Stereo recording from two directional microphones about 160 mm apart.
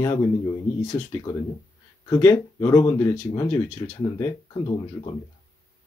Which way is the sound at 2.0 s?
20° left (ahead or behind).